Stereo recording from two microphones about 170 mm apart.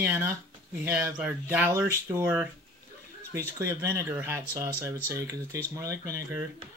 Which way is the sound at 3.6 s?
20° right (ahead or behind).